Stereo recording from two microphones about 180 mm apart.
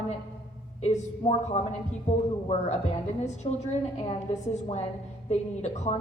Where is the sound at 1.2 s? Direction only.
35° left (ahead or behind).